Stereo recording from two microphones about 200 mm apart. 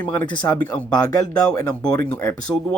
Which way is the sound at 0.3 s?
20° left (ahead or behind).